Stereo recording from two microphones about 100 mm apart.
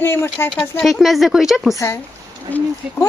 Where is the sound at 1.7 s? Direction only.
30° left (ahead or behind).